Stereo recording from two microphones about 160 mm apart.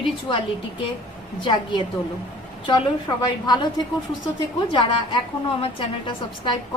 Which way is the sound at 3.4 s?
25° left (ahead or behind).